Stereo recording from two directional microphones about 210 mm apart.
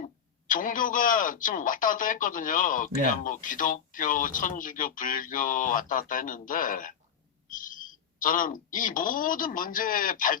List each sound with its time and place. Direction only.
0.0 s speech: 40° left (ahead or behind)